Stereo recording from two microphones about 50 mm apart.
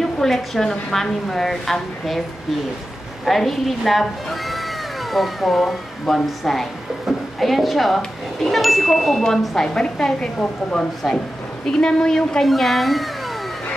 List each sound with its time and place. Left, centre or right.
0.0 s a woman's voice: centre
3.3 s speech: centre
9.8 s a woman's voice: centre
12.4 s speech: centre